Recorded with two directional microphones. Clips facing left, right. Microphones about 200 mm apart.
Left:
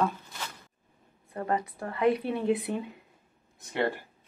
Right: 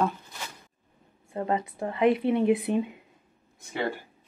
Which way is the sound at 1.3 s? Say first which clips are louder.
Right 2 dB; 25° right (ahead or behind).